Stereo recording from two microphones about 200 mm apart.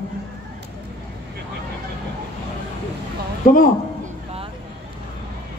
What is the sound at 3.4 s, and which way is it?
Speech, 45° left (ahead or behind).